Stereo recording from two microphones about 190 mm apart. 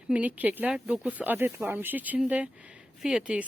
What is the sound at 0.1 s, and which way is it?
Speech, 5° right (ahead or behind).